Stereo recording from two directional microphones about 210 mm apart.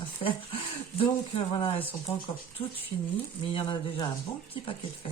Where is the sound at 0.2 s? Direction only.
25° left (ahead or behind).